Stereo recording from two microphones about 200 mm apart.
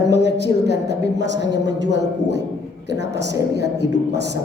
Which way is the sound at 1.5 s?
20° right (ahead or behind).